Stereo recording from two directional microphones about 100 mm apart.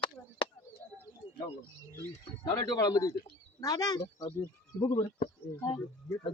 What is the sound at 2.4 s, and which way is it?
Speech, 40° left (ahead or behind).